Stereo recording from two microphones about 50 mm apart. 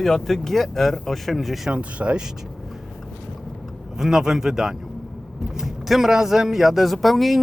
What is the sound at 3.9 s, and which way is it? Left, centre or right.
Speech, centre.